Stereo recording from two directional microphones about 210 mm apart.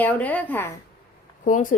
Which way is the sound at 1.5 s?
40° left (ahead or behind).